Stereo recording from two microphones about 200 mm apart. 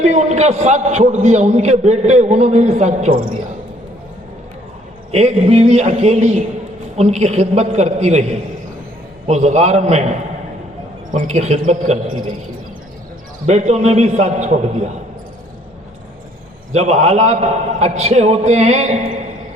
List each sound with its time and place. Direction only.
0.0 s a man's voice: 35° right (ahead or behind)
5.1 s a man's voice: 35° right (ahead or behind)
9.2 s a man's voice: 35° right (ahead or behind)
13.5 s a man's voice: 35° right (ahead or behind)
16.7 s a man's voice: 35° right (ahead or behind)